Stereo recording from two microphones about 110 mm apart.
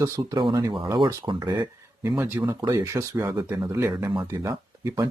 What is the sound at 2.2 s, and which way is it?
Speech, 25° right (ahead or behind).